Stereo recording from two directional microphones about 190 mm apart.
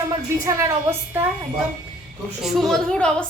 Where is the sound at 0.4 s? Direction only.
15° right (ahead or behind).